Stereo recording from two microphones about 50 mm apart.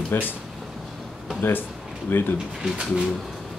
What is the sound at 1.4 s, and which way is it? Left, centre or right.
Speech, left.